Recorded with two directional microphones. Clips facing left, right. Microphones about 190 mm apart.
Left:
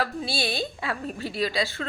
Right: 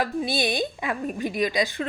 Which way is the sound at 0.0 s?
15° right (ahead or behind).